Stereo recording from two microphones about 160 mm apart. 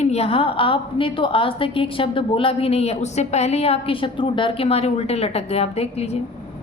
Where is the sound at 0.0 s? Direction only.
40° left (ahead or behind).